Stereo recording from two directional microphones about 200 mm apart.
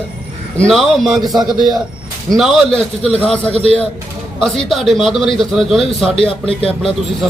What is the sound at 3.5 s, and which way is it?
Speech, 30° right (ahead or behind).